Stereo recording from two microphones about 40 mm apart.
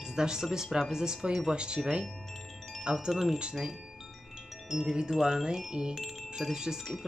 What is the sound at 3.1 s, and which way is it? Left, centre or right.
Speech, centre.